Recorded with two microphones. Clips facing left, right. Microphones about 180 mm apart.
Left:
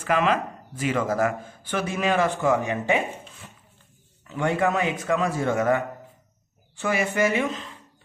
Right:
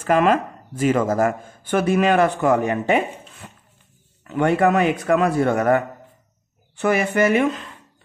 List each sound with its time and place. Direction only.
0.0 s speech: 45° right (ahead or behind)
4.3 s speech: 65° right (ahead or behind)
6.8 s speech: 60° right (ahead or behind)